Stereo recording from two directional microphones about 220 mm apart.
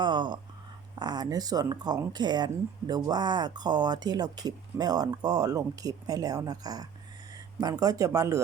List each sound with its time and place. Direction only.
0.0 s speech: 20° right (ahead or behind)